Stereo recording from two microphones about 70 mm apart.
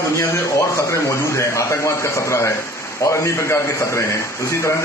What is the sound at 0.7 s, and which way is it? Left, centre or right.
A man's voice, left.